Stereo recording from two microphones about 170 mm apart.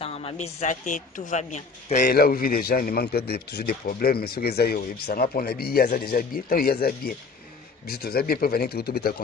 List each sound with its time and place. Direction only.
0.0 s a woman's voice: 35° left (ahead or behind)
2.1 s a man's voice: 60° left (ahead or behind)